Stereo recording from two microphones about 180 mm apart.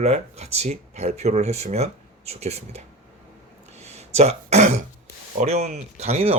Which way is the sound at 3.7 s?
40° right (ahead or behind).